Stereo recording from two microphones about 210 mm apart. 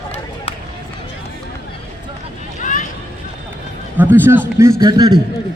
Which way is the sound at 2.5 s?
40° left (ahead or behind).